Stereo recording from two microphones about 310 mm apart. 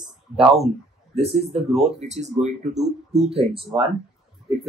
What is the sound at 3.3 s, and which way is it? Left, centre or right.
Speech, centre.